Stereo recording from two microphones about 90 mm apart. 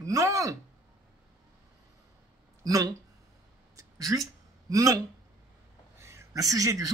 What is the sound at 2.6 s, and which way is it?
Speech, 40° right (ahead or behind).